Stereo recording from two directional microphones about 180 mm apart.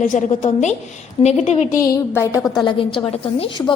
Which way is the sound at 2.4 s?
Centre (ahead or behind).